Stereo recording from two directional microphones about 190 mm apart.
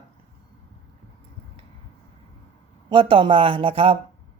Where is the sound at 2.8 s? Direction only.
25° right (ahead or behind).